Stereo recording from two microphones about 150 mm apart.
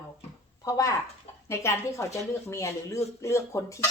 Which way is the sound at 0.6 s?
25° left (ahead or behind).